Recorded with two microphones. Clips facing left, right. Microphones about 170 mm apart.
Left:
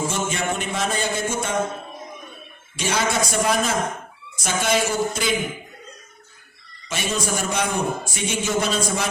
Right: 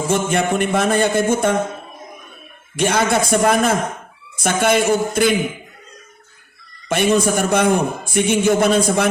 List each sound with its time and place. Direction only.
0.1 s a man's voice: 55° right (ahead or behind)
2.7 s a man's voice: 55° right (ahead or behind)
6.8 s a man's voice: 55° right (ahead or behind)